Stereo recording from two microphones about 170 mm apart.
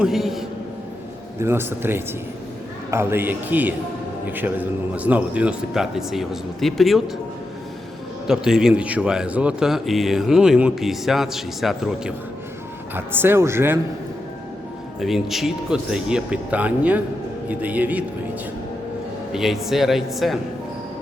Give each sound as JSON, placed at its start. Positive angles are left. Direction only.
{"t": 0.0, "sound": "speech", "side_deg": 0}
{"t": 1.4, "sound": "a man's voice", "side_deg": -15}
{"t": 8.3, "sound": "speech", "side_deg": -5}
{"t": 12.9, "sound": "a man's voice", "side_deg": -15}
{"t": 15.0, "sound": "a man's voice", "side_deg": 0}
{"t": 19.3, "sound": "speech", "side_deg": 0}